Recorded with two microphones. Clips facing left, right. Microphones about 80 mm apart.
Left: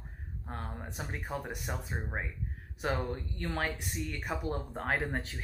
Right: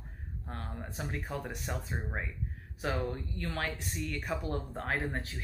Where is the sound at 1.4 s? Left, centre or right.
Centre.